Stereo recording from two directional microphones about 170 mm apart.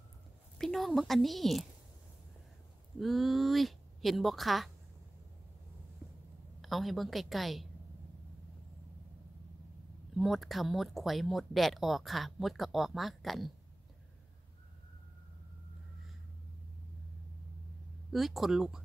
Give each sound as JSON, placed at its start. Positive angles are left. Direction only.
{"t": 0.6, "sound": "speech", "side_deg": 0}
{"t": 3.0, "sound": "speech", "side_deg": 0}
{"t": 6.6, "sound": "speech", "side_deg": 0}
{"t": 10.1, "sound": "speech", "side_deg": 0}
{"t": 18.1, "sound": "speech", "side_deg": 0}